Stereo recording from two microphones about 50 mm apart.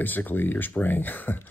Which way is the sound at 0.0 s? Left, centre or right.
Left.